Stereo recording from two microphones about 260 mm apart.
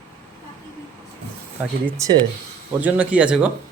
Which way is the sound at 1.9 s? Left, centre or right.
Centre.